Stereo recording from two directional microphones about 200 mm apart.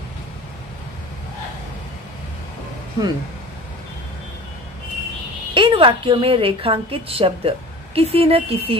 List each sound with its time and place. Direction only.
3.0 s a woman's voice: 20° right (ahead or behind)
5.5 s a woman's voice: 25° right (ahead or behind)